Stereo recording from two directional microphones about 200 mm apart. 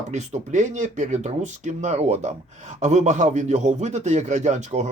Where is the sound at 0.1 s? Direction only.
35° right (ahead or behind).